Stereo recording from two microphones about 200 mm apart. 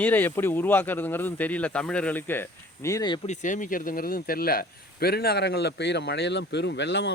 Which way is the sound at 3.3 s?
40° left (ahead or behind).